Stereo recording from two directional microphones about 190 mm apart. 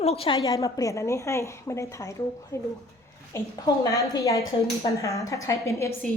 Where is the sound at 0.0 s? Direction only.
30° left (ahead or behind).